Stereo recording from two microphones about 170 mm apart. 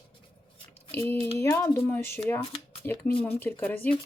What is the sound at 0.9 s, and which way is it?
Speech, 10° left (ahead or behind).